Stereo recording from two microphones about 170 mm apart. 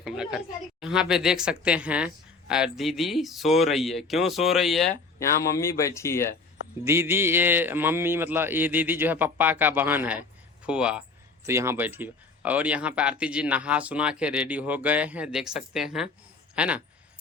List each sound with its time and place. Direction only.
0.0 s a woman's voice: 5° right (ahead or behind)
5.4 s speech: 20° left (ahead or behind)
6.8 s speech: 15° right (ahead or behind)
11.4 s speech: 15° right (ahead or behind)